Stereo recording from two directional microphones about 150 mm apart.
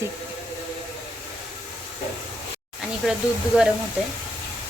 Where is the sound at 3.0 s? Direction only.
5° right (ahead or behind).